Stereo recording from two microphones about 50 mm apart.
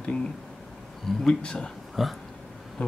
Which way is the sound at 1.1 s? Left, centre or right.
Centre.